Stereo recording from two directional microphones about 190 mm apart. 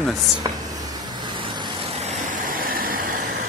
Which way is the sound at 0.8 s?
20° right (ahead or behind).